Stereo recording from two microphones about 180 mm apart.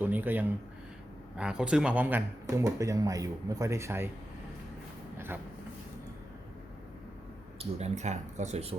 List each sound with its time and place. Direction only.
0.0 s speech: 10° right (ahead or behind)
5.1 s a sound: 10° right (ahead or behind)
7.6 s speech: 35° right (ahead or behind)